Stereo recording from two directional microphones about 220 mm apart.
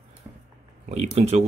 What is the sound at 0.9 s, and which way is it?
Speech, 30° right (ahead or behind).